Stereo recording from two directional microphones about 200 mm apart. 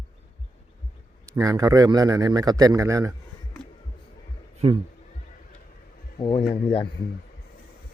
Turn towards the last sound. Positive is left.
turn(degrees=25)  # may be behind; listen again after turning